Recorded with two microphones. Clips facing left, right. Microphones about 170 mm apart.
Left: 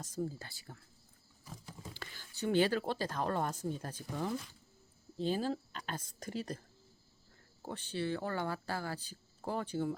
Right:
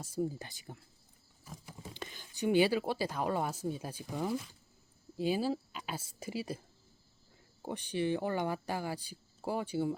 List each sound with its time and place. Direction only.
0.0 s speech: 10° right (ahead or behind)
1.9 s speech: 20° right (ahead or behind)